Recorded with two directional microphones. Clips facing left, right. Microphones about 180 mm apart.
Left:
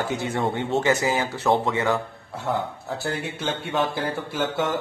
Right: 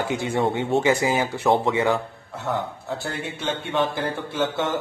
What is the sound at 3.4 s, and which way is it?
Speech, centre (ahead or behind).